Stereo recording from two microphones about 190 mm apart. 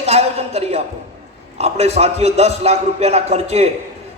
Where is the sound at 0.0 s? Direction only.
35° right (ahead or behind).